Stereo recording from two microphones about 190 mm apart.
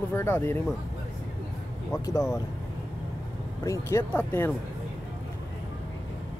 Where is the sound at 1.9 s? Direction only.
15° left (ahead or behind).